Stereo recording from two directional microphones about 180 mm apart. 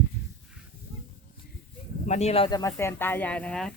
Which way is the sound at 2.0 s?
40° left (ahead or behind).